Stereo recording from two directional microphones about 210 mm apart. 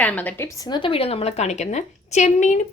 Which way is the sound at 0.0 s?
5° left (ahead or behind).